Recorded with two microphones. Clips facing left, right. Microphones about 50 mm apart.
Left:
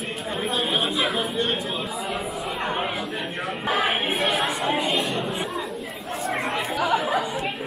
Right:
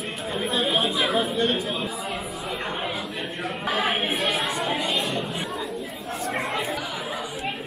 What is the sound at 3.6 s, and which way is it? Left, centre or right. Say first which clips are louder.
Choir: left 1 dB; left.